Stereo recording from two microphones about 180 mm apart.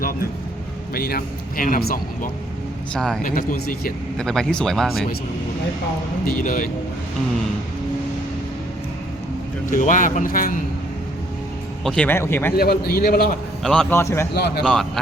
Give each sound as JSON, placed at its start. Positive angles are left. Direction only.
{"t": 0.9, "sound": "speech", "side_deg": 55}
{"t": 2.9, "sound": "speech", "side_deg": 5}
{"t": 3.2, "sound": "speech", "side_deg": 50}
{"t": 4.2, "sound": "speech", "side_deg": 5}
{"t": 6.2, "sound": "speech", "side_deg": 50}
{"t": 9.6, "sound": "speech", "side_deg": 45}
{"t": 11.8, "sound": "speech", "side_deg": 5}
{"t": 12.5, "sound": "speech", "side_deg": 60}
{"t": 13.6, "sound": "a man's voice", "side_deg": 0}
{"t": 13.9, "sound": "speech", "side_deg": 15}
{"t": 14.3, "sound": "speech", "side_deg": 65}
{"t": 14.6, "sound": "speech", "side_deg": 5}